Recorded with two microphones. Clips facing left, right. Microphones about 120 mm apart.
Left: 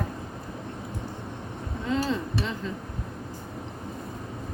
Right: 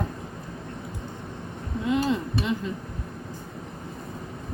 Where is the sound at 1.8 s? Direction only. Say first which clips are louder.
Right 3 dB; 15° right (ahead or behind).